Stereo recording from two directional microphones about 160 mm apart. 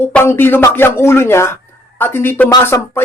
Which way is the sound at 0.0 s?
15° left (ahead or behind).